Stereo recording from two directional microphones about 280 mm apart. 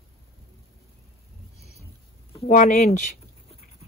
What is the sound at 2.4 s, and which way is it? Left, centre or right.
Speech, left.